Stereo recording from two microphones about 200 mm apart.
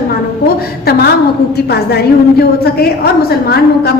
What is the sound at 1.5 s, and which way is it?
A woman's voice, 55° left (ahead or behind).